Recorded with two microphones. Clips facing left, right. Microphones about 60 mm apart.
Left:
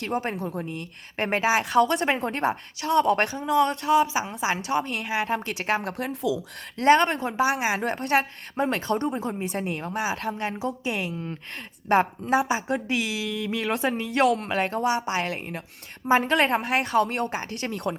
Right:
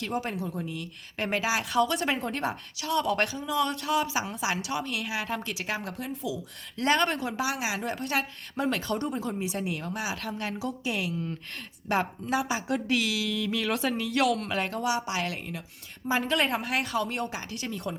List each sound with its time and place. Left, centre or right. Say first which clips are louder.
0.1 s a woman's voice: left 6 dB; left
3.9 s a woman's voice: left 7 dB; left
5.2 s a woman's voice: left 5 dB; left
6.8 s a woman's voice: left 6 dB; left
7.6 s a woman's voice: left 5 dB; left
8.5 s a woman's voice: left 4 dB; left
11.9 s a woman's voice: left 6 dB; left
12.5 s a woman's voice: left 2 dB; left
16.4 s a woman's voice: left 5 dB; left